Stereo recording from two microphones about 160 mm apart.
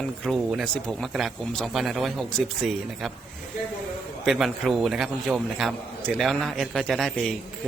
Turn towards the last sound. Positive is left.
turn(degrees=0)  # may be behind; listen again after turning